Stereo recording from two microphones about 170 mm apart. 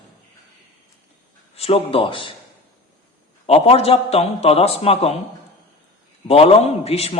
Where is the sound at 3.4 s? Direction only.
35° left (ahead or behind).